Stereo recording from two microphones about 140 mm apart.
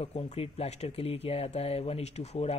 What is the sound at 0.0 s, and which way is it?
Speech, 50° left (ahead or behind).